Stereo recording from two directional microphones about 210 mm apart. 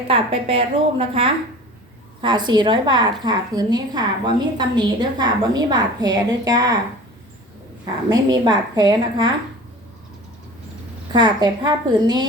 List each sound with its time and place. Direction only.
0.1 s a woman's voice: 25° right (ahead or behind)
8.1 s a woman's voice: 20° right (ahead or behind)
11.1 s a woman's voice: 20° right (ahead or behind)